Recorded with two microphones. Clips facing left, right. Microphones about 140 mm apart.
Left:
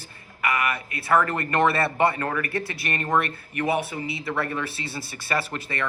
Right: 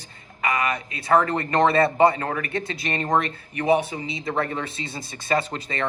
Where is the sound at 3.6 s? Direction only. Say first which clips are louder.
Right 5 dB; 20° right (ahead or behind).